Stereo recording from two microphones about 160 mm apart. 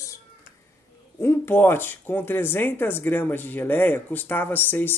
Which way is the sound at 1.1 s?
15° left (ahead or behind).